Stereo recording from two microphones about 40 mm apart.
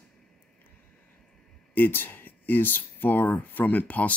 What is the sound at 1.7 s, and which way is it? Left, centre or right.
Speech, left.